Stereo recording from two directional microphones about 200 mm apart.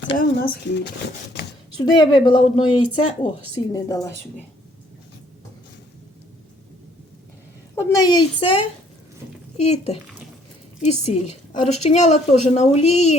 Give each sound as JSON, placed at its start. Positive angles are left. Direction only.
{"t": 0.2, "sound": "speech", "side_deg": 50}
{"t": 1.8, "sound": "a woman's voice", "side_deg": 20}
{"t": 7.8, "sound": "a woman's voice", "side_deg": 15}